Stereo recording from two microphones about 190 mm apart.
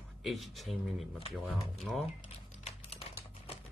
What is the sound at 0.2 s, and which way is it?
Speech, centre (ahead or behind).